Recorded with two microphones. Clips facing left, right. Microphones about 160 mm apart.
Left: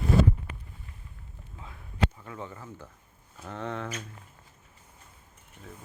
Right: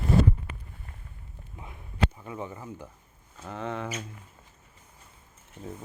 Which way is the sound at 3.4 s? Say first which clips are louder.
Right 1 dB; centre (ahead or behind).